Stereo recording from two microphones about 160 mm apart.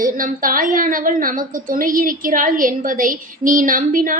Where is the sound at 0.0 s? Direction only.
60° right (ahead or behind).